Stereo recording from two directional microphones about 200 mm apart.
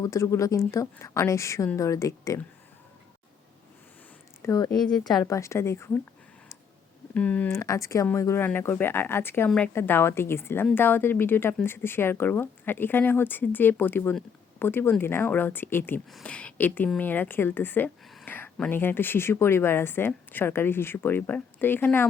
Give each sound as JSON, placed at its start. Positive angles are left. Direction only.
{"t": 0.0, "sound": "a woman's voice", "side_deg": 15}
{"t": 4.4, "sound": "speech", "side_deg": 20}
{"t": 4.8, "sound": "a woman's voice", "side_deg": 5}
{"t": 5.2, "sound": "a woman's voice", "side_deg": 15}
{"t": 7.1, "sound": "a woman's voice", "side_deg": 5}